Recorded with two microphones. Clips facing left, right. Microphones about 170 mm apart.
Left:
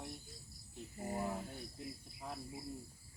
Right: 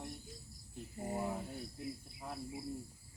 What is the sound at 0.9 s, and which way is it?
Speech, 25° right (ahead or behind).